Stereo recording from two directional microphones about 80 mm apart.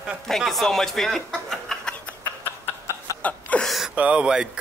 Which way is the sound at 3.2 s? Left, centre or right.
Centre.